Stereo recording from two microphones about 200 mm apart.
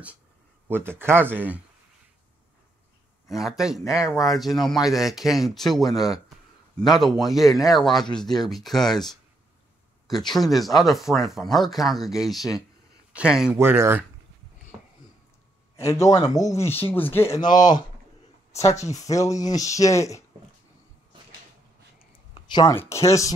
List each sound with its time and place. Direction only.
0.7 s speech: 10° right (ahead or behind)
3.3 s speech: centre (ahead or behind)
10.3 s speech: centre (ahead or behind)
14.7 s sniff: 15° right (ahead or behind)
15.7 s speech: 15° left (ahead or behind)
22.3 s speech: 20° left (ahead or behind)